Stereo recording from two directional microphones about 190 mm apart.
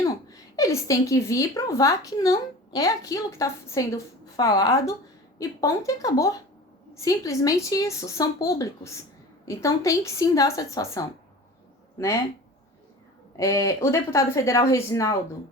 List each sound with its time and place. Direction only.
0.3 s a woman's voice: 15° left (ahead or behind)
13.3 s a woman's voice: 15° left (ahead or behind)